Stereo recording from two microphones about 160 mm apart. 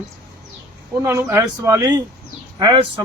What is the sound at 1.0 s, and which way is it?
A man's voice, 15° right (ahead or behind).